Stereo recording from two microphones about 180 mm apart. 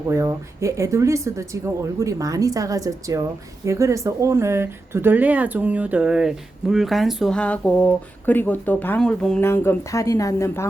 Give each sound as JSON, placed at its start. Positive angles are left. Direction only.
{"t": 0.1, "sound": "speech", "side_deg": -15}